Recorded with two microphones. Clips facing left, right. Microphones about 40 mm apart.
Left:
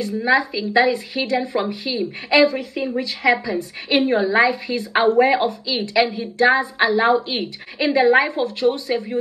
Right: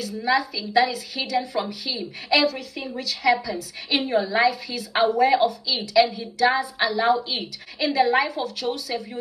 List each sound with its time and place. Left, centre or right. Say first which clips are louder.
0.0 s a woman's voice: left 5 dB; left